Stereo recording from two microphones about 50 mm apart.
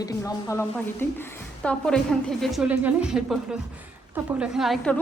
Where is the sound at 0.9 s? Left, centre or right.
Left.